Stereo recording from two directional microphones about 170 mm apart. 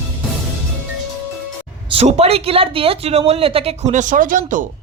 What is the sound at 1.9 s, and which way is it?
A woman's voice, 35° right (ahead or behind).